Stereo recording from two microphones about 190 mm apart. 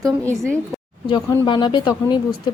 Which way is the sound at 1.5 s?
25° left (ahead or behind).